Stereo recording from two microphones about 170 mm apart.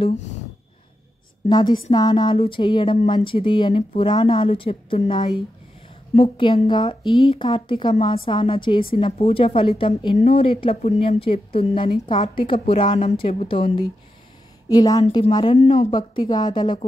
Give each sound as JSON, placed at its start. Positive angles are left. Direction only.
{"t": 1.5, "sound": "a woman's voice", "side_deg": 25}
{"t": 15.5, "sound": "a woman's voice", "side_deg": 40}
{"t": 15.9, "sound": "speech", "side_deg": 25}